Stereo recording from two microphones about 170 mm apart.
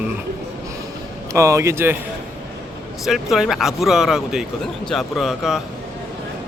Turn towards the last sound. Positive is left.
turn(degrees=0)  # may be behind; listen again after turning